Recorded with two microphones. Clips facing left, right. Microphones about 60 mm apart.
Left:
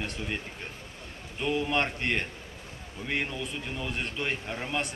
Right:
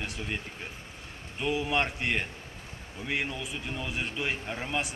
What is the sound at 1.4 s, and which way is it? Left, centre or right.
Speech, centre.